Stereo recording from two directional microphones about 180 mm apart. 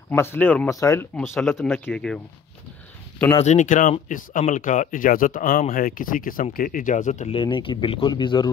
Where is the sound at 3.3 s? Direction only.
40° left (ahead or behind).